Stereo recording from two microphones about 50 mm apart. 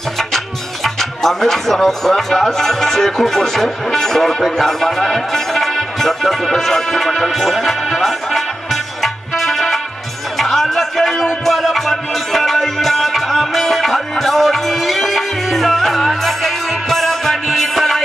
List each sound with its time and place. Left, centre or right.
0.8 s speech: centre
9.0 s music: centre